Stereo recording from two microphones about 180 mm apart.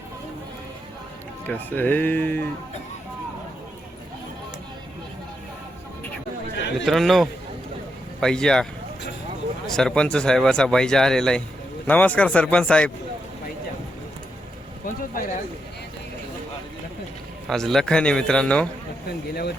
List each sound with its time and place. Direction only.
1.5 s speech: 10° left (ahead or behind)
6.8 s speech: centre (ahead or behind)
9.6 s speech: 5° left (ahead or behind)
15.1 s speech: 50° left (ahead or behind)
17.5 s speech: 5° left (ahead or behind)
19.3 s speech: 60° left (ahead or behind)